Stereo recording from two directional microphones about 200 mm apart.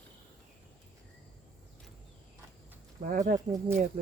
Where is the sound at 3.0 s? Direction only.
40° right (ahead or behind).